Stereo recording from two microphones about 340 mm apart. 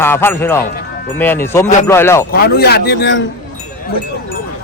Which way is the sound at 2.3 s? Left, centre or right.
Left.